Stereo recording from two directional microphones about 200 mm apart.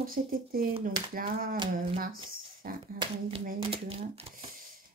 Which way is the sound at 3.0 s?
30° right (ahead or behind).